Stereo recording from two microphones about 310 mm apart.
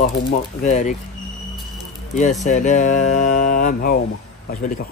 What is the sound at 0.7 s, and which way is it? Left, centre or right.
Speech, left.